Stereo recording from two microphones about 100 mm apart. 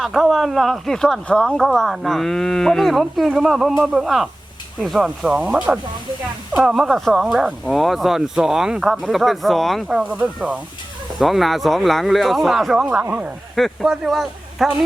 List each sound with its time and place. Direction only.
0.0 s speech: centre (ahead or behind)
10.0 s speech: 10° right (ahead or behind)
11.2 s speech: centre (ahead or behind)